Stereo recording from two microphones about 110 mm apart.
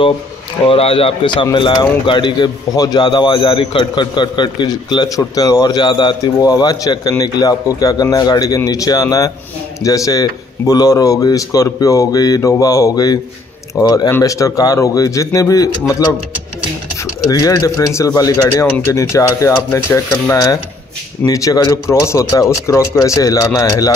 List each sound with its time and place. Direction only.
0.7 s speech: 60° left (ahead or behind); by 15.7 s 30° left (ahead or behind)
17.0 s speech: 35° left (ahead or behind)